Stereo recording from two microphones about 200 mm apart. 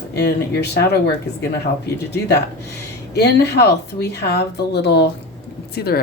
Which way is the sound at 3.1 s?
55° left (ahead or behind).